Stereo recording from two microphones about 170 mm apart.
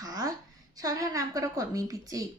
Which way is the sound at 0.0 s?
20° right (ahead or behind).